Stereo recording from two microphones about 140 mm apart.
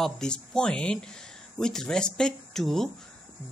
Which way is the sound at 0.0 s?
5° left (ahead or behind).